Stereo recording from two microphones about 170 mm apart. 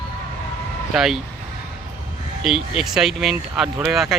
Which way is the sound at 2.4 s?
Centre (ahead or behind).